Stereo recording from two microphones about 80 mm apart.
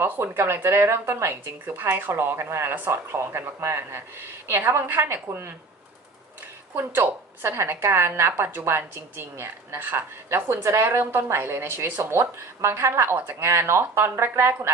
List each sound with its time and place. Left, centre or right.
0.0 s a woman's voice: right
6.7 s a woman's voice: right